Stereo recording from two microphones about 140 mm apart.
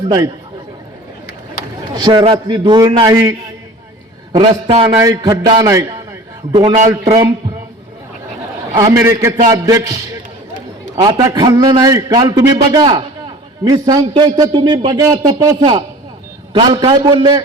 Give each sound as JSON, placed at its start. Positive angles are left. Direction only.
{"t": 1.9, "sound": "a man's voice", "side_deg": -30}
{"t": 5.3, "sound": "a man's voice", "side_deg": -40}
{"t": 8.8, "sound": "a man's voice", "side_deg": -25}
{"t": 11.0, "sound": "a man's voice", "side_deg": -25}
{"t": 14.1, "sound": "a man's voice", "side_deg": -40}